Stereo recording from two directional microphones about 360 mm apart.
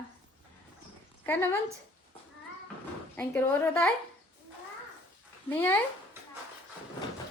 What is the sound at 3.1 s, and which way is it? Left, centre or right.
Speech, centre.